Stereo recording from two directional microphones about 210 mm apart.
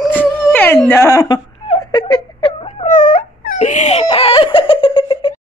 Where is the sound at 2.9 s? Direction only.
40° left (ahead or behind).